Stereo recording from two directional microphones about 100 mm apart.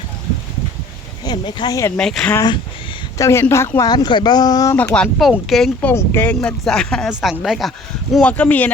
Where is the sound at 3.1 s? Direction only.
30° left (ahead or behind).